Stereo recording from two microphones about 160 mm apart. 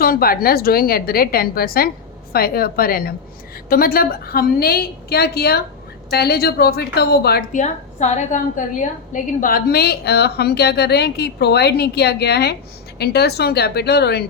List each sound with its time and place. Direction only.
0.0 s a woman's voice: 65° left (ahead or behind)
7.5 s a woman's voice: 50° left (ahead or behind)
9.4 s a woman's voice: 65° left (ahead or behind); by 14.3 s 90° left